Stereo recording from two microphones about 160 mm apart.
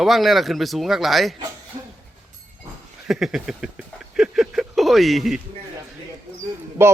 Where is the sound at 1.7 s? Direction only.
40° right (ahead or behind).